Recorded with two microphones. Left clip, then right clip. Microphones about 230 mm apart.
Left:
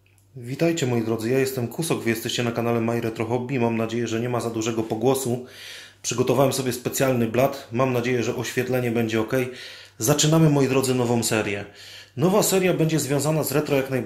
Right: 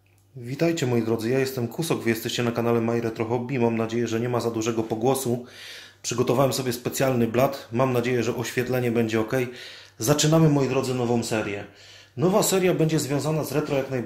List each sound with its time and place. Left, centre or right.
0.5 s speech: centre